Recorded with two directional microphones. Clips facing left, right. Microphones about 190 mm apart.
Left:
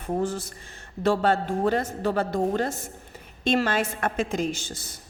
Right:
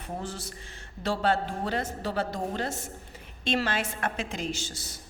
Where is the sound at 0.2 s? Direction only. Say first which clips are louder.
Left 9 dB; 50° left (ahead or behind).